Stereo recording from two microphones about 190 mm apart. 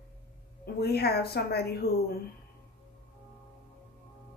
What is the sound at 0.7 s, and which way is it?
Speech, 55° left (ahead or behind).